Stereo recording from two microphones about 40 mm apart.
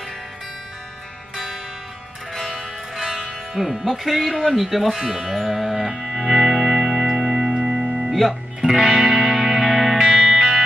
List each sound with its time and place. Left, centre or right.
1.3 s music: centre
3.0 s music: centre
3.5 s speech: centre
5.1 s music: centre
7.5 s music: right
8.1 s speech: centre
8.5 s music: centre